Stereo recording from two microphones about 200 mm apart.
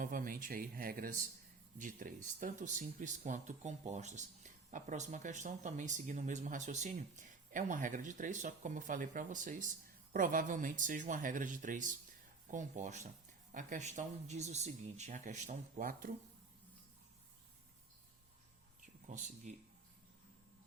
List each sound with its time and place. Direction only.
0.0 s speech: 45° right (ahead or behind)
18.8 s a sound: 40° right (ahead or behind)
19.5 s speech: 35° right (ahead or behind)